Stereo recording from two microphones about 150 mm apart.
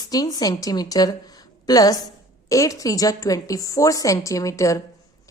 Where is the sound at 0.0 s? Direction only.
25° left (ahead or behind).